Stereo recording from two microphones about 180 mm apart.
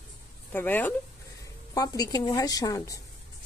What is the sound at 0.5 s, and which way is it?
A woman's voice, 10° left (ahead or behind).